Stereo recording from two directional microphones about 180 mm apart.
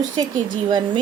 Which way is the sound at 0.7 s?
25° right (ahead or behind).